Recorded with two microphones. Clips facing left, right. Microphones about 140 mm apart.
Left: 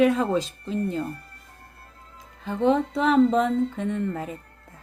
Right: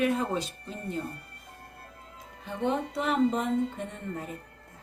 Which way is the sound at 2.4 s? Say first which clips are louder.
Left 8 dB; 90° left.